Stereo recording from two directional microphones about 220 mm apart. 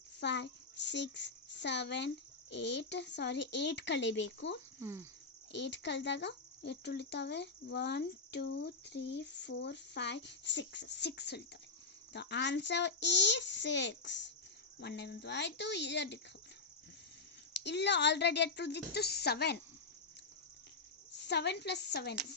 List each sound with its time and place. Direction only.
0.2 s speech: 50° left (ahead or behind)
4.8 s speech: 10° right (ahead or behind)
5.5 s speech: 50° left (ahead or behind)
17.5 s speech: 50° left (ahead or behind)
21.2 s speech: 50° left (ahead or behind)